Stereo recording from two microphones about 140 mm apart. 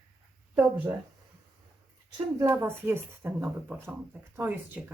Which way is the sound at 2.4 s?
20° right (ahead or behind).